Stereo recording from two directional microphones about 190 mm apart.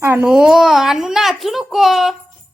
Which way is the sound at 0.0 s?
10° right (ahead or behind).